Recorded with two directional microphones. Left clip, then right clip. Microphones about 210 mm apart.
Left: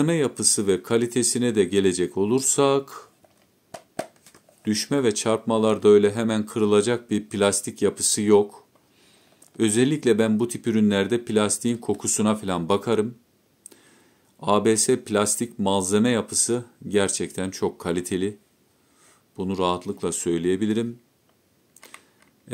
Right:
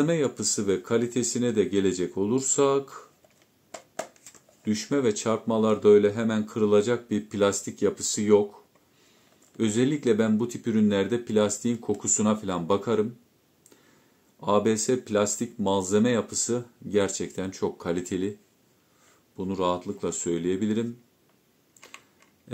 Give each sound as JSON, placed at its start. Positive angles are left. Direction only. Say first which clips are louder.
{"t": 0.0, "sound": "speech", "louder": "left 2 dB", "side_deg": 35}
{"t": 4.6, "sound": "speech", "louder": "left 3 dB", "side_deg": 35}
{"t": 9.6, "sound": "speech", "louder": "left 4 dB", "side_deg": 35}
{"t": 14.4, "sound": "speech", "louder": "left 3 dB", "side_deg": 35}
{"t": 19.3, "sound": "speech", "louder": "left 3 dB", "side_deg": 35}